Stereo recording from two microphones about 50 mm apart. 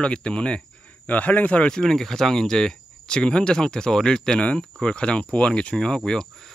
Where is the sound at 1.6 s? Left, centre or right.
Centre.